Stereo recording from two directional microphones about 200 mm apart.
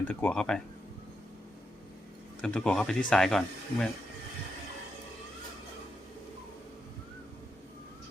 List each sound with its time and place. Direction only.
0.0 s speech: 10° left (ahead or behind)
2.4 s speech: 5° left (ahead or behind)